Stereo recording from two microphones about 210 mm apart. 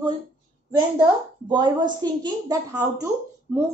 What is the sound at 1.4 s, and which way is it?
A woman's voice, 20° right (ahead or behind).